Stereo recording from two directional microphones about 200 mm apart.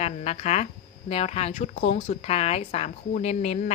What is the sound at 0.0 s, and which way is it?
A woman's voice, 30° left (ahead or behind).